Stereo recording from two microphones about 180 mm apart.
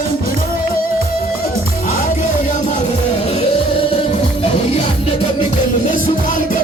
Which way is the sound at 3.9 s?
35° left (ahead or behind).